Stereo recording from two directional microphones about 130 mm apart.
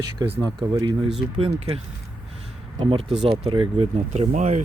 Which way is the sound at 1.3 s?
45° right (ahead or behind).